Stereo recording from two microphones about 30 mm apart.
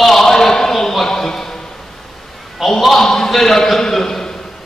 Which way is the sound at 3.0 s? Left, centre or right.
Centre.